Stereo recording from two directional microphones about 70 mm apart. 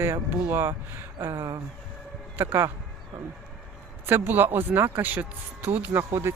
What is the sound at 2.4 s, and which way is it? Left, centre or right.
Speech, right.